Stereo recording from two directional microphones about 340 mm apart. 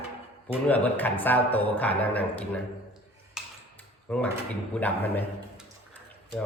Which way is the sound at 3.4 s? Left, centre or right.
Centre.